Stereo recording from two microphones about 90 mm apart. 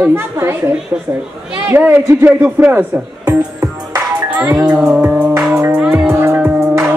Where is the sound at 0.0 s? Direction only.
30° right (ahead or behind).